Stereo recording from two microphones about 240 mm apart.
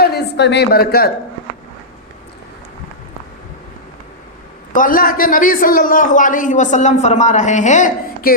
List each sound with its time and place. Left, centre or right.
0.0 s speech: left
4.7 s a man's voice: left